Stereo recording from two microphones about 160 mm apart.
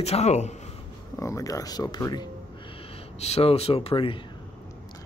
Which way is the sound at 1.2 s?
20° left (ahead or behind).